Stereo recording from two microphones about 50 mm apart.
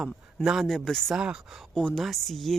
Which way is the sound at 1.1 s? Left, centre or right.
Centre.